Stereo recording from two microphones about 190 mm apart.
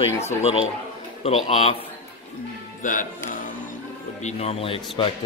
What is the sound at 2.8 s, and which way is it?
A man's voice, 45° left (ahead or behind).